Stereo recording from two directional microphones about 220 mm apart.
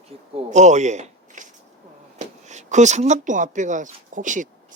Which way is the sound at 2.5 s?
35° right (ahead or behind).